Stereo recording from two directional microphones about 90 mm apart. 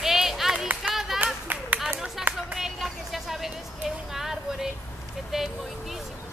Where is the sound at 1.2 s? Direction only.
20° right (ahead or behind).